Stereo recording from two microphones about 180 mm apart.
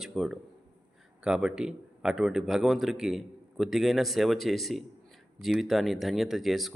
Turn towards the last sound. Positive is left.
turn(degrees=0)  # may be behind; listen again after turning